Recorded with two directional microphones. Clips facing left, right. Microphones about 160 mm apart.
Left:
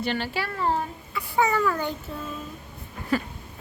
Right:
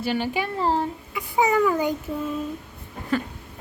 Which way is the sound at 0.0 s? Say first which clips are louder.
Right 3 dB; 10° right (ahead or behind).